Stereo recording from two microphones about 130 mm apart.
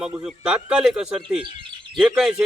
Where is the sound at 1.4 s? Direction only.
40° right (ahead or behind).